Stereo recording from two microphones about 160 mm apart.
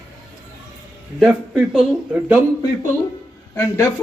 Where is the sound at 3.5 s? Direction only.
15° left (ahead or behind).